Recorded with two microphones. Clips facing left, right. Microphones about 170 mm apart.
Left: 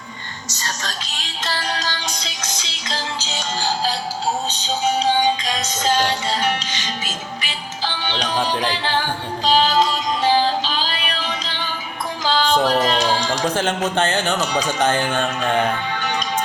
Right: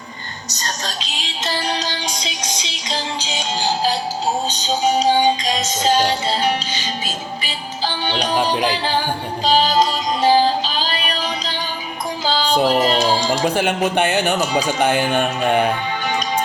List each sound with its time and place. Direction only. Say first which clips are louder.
0.4 s whispering: right 1 dB; 40° right (ahead or behind)
1.7 s music: right 2 dB; 20° right (ahead or behind)
5.5 s speech: right 3 dB; 15° right (ahead or behind)
6.1 s music: right 2 dB; 30° right (ahead or behind)
8.1 s speech: right 3 dB; 10° right (ahead or behind)
9.5 s music: right 1 dB; 40° right (ahead or behind)
12.5 s speech: right 5 dB; 10° right (ahead or behind)